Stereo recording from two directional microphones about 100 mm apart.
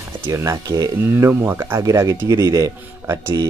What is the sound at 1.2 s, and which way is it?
Speech, 25° right (ahead or behind).